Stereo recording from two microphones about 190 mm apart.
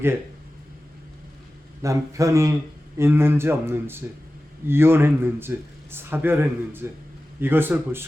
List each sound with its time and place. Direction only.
1.8 s speech: 15° right (ahead or behind)